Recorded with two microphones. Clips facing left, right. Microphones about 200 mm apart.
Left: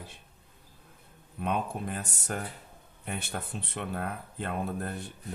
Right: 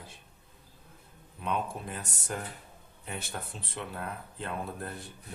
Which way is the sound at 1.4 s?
55° left (ahead or behind).